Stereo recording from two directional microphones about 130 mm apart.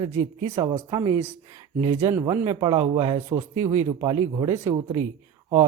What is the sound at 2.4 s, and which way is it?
Speech, 40° right (ahead or behind).